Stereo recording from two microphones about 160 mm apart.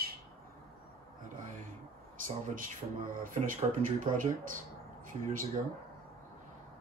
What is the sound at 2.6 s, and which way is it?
Speech, 60° right (ahead or behind).